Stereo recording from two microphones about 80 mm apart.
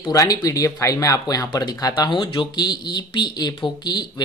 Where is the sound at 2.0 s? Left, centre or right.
Left.